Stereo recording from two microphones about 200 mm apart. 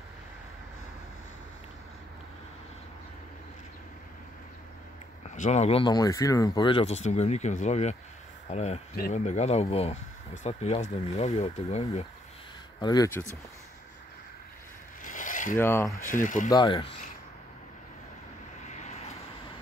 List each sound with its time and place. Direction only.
5.3 s speech: 35° left (ahead or behind)
12.8 s speech: 20° left (ahead or behind)
15.0 s mechanisms: 40° left (ahead or behind)
15.5 s speech: 10° left (ahead or behind)
16.0 s speech: 40° left (ahead or behind)
16.4 s speech: 20° left (ahead or behind)
18.7 s vehicle: 35° left (ahead or behind)